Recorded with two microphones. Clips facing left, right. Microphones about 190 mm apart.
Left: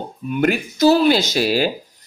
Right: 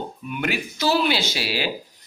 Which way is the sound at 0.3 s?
45° left (ahead or behind).